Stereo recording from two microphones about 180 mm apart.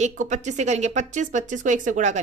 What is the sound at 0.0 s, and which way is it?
A woman's voice, 45° right (ahead or behind).